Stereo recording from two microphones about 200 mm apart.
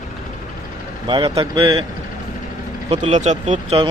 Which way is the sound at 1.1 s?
25° right (ahead or behind).